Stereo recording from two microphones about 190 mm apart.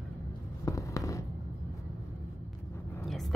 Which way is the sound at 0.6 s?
15° left (ahead or behind).